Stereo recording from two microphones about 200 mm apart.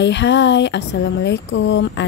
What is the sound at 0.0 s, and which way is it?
Speech, 60° left (ahead or behind).